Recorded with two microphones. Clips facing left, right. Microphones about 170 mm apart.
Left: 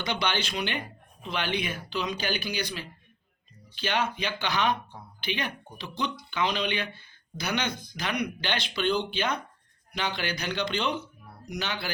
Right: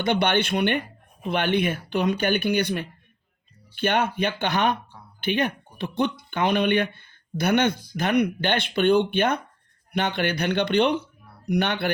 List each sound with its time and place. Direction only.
0.0 s speech: 55° right (ahead or behind)